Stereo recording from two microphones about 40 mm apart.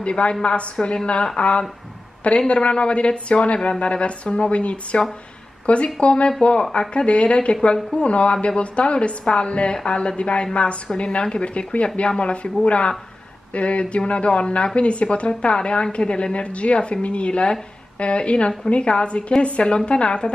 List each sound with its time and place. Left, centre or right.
0.0 s a woman's voice: left